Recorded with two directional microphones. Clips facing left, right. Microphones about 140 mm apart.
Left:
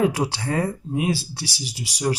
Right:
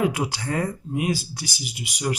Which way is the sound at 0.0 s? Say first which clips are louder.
Left 2 dB; 30° left (ahead or behind).